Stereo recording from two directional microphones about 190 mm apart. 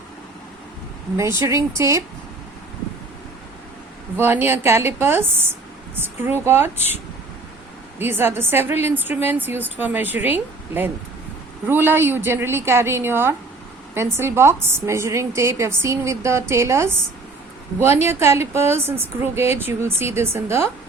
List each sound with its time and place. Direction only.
1.4 s a woman's voice: 15° right (ahead or behind)
4.2 s a woman's voice: 10° right (ahead or behind)
7.9 s a woman's voice: 10° right (ahead or behind)